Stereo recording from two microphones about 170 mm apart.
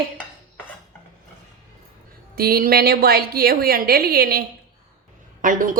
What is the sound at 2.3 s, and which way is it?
A woman's voice, 60° right (ahead or behind).